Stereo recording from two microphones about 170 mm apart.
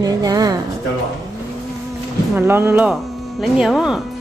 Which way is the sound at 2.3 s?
15° right (ahead or behind).